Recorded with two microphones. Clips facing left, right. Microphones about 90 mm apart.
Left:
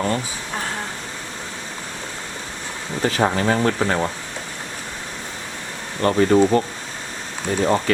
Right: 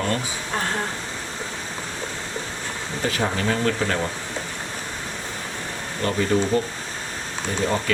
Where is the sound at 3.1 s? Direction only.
35° left (ahead or behind).